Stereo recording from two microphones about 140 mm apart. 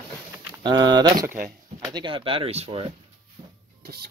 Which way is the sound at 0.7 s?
30° right (ahead or behind).